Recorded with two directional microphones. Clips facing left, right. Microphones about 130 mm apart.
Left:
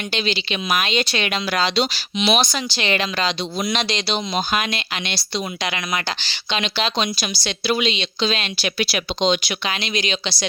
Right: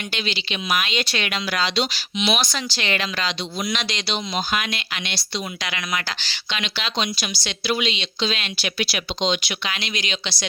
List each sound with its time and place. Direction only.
0.1 s speech: 35° left (ahead or behind)
2.4 s speech: 20° left (ahead or behind)